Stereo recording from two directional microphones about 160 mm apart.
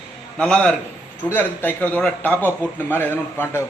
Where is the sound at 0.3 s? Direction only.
5° left (ahead or behind).